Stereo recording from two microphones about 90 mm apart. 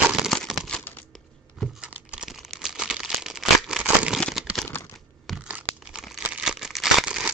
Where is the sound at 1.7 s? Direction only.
10° right (ahead or behind).